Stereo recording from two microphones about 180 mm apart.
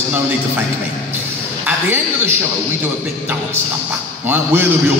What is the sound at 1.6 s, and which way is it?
Speech, 10° right (ahead or behind).